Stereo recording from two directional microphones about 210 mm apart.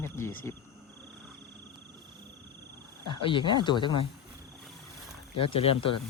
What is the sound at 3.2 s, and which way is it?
Speech, 25° left (ahead or behind).